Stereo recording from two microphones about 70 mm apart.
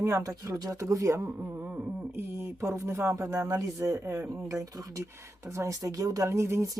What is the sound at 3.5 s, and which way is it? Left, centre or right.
Speech, right.